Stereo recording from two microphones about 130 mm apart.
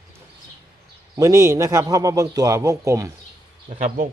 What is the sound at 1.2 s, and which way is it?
A man's voice, 25° right (ahead or behind).